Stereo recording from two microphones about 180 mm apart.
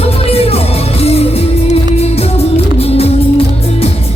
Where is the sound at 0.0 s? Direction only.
35° left (ahead or behind).